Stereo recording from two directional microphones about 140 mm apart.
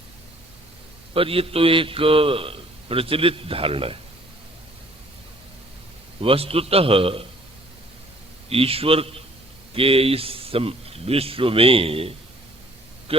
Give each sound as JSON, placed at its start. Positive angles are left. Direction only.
{"t": 1.1, "sound": "a man's voice", "side_deg": -40}
{"t": 6.2, "sound": "speech", "side_deg": -45}
{"t": 8.4, "sound": "speech", "side_deg": -45}